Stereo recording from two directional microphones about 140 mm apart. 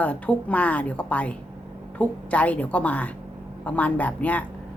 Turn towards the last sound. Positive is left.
turn(degrees=10)  # may be behind; listen again after turning